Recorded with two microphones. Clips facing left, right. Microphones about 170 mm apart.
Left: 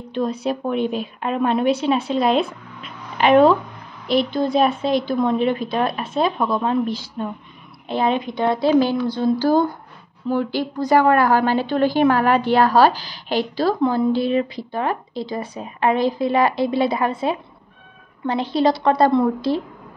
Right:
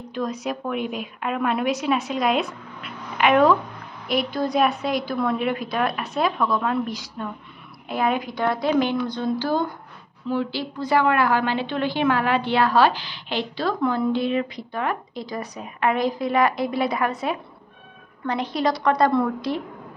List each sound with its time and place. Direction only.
0.1 s a woman's voice: 30° left (ahead or behind)
10.2 s a woman's voice: 45° left (ahead or behind); by 19.6 s 30° left (ahead or behind)